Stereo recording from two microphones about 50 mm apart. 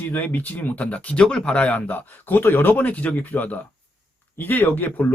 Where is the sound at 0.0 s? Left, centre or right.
Left.